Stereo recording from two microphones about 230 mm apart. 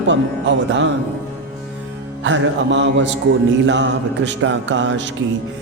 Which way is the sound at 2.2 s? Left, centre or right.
Right.